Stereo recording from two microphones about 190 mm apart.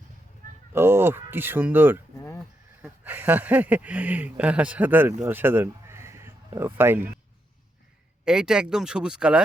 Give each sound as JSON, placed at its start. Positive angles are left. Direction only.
{"t": 0.7, "sound": "speech", "side_deg": -10}
{"t": 2.1, "sound": "a sound", "side_deg": 15}
{"t": 2.8, "sound": "speech", "side_deg": -10}
{"t": 8.2, "sound": "speech", "side_deg": -5}